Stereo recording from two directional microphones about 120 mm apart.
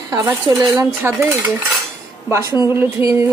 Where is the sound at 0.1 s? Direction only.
25° right (ahead or behind).